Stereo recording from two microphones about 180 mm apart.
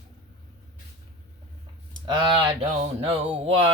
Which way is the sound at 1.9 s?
25° right (ahead or behind).